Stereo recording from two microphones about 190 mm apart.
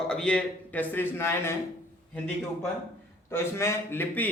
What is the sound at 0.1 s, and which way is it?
A man's voice, 5° left (ahead or behind).